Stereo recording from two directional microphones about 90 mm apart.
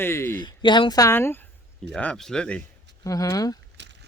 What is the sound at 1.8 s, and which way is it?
Speech, 5° left (ahead or behind).